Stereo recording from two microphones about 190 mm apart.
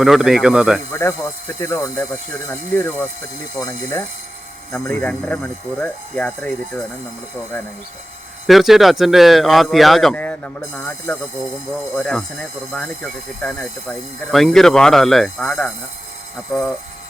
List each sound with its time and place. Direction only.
0.0 s speech: centre (ahead or behind)
0.9 s speech: 15° left (ahead or behind)
7.5 s speech: 10° left (ahead or behind)
8.4 s speech: centre (ahead or behind)